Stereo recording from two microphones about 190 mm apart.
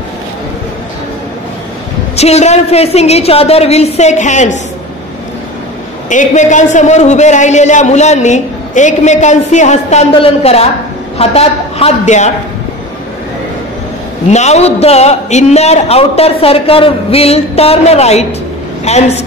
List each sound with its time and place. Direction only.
2.1 s a man's voice: 35° left (ahead or behind)
6.0 s a man's voice: 40° left (ahead or behind)
14.3 s a man's voice: 35° left (ahead or behind)